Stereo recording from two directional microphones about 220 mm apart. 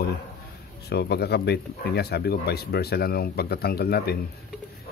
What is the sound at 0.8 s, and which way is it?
Speech, 45° left (ahead or behind).